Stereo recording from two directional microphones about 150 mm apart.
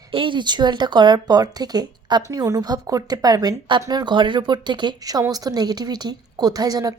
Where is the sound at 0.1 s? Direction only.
35° right (ahead or behind).